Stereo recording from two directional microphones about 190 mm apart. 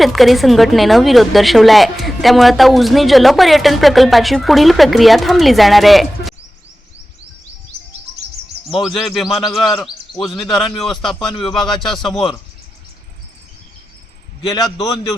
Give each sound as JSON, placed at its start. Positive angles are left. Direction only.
{"t": 0.0, "sound": "a woman's voice", "side_deg": 0}
{"t": 8.6, "sound": "a woman's voice", "side_deg": 0}
{"t": 14.5, "sound": "a man's voice", "side_deg": 20}